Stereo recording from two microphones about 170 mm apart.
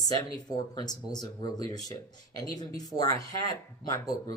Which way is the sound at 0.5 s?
25° left (ahead or behind).